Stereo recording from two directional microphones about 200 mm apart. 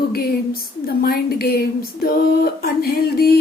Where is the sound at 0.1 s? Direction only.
50° left (ahead or behind).